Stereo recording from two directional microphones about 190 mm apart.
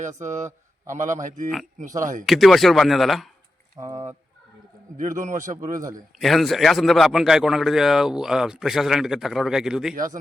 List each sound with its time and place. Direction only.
0.9 s a man's voice: 40° right (ahead or behind)
2.2 s a man's voice: centre (ahead or behind)
3.8 s speech: 15° right (ahead or behind)
4.9 s a man's voice: 40° right (ahead or behind)
6.1 s a man's voice: centre (ahead or behind)